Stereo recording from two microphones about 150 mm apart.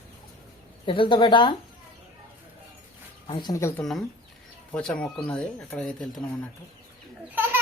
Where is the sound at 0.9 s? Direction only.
35° left (ahead or behind).